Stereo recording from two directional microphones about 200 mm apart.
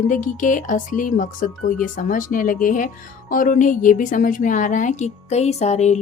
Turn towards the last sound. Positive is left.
turn(degrees=35)  # may be behind; listen again after turning